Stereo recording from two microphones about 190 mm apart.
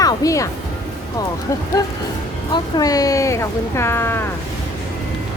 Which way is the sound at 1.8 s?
15° left (ahead or behind).